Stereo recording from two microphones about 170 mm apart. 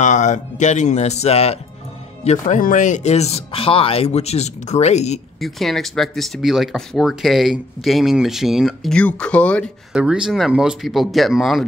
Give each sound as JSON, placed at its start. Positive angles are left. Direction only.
{"t": 0.0, "sound": "speech", "side_deg": 45}
{"t": 2.2, "sound": "speech", "side_deg": 45}
{"t": 5.4, "sound": "speech", "side_deg": 0}
{"t": 9.9, "sound": "speech", "side_deg": -5}